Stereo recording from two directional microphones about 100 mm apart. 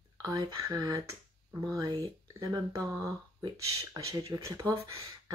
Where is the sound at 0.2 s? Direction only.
40° right (ahead or behind).